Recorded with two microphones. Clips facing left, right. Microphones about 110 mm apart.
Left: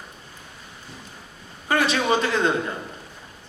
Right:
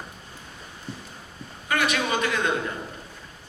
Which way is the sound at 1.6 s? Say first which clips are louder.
Left 4 dB; 30° left (ahead or behind).